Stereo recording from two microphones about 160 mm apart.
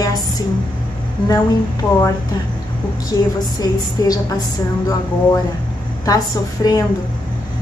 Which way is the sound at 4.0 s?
25° left (ahead or behind).